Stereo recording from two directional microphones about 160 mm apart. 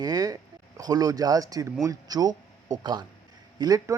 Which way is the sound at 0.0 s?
25° right (ahead or behind).